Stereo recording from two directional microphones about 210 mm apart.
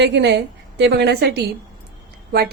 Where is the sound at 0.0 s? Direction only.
55° right (ahead or behind).